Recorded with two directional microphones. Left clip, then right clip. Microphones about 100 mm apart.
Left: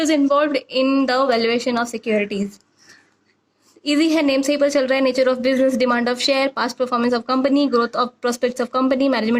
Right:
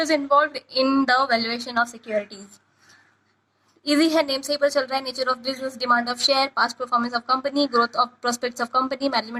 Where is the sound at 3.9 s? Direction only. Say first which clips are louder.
Left 3 dB; 35° left (ahead or behind).